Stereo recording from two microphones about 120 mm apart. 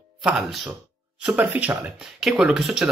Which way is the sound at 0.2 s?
5° right (ahead or behind).